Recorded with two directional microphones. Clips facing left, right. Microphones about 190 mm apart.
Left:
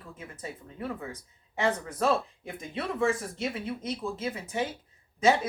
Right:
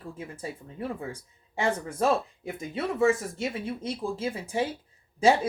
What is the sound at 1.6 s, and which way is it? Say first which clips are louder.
Speech: right 1 dB; 30° right (ahead or behind).